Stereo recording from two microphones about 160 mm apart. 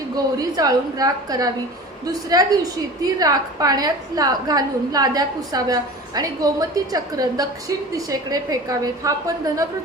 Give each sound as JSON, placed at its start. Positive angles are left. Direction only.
{"t": 0.3, "sound": "a woman's voice", "side_deg": -25}